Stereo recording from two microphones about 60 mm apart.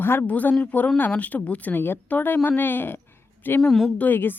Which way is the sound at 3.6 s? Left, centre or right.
Centre.